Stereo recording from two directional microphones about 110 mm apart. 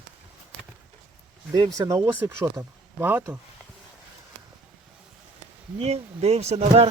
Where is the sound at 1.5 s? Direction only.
35° right (ahead or behind); by 3.3 s 15° right (ahead or behind).